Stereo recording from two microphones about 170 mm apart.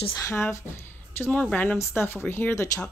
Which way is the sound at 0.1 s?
15° left (ahead or behind).